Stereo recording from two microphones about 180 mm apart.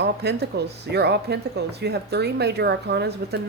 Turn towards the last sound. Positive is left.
turn(degrees=-70)  # may be behind; listen again after turning